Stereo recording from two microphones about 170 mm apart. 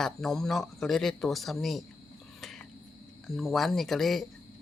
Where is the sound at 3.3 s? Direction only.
Centre (ahead or behind).